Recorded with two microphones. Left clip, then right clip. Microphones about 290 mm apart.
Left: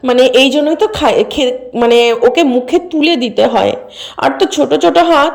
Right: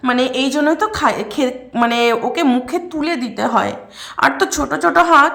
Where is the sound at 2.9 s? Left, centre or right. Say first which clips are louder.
Left 9 dB; centre.